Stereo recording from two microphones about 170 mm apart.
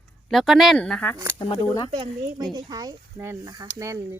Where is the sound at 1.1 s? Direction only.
15° right (ahead or behind).